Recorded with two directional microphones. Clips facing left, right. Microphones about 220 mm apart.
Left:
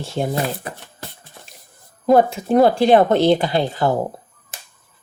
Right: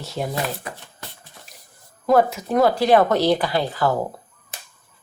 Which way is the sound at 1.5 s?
25° left (ahead or behind).